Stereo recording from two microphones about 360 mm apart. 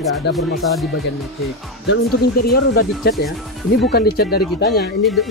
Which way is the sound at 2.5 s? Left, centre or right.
Left.